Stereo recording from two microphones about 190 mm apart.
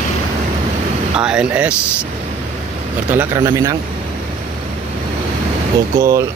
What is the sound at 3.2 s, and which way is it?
Speech, 15° right (ahead or behind).